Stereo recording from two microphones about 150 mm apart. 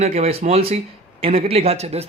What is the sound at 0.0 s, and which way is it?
A man's voice, 45° right (ahead or behind).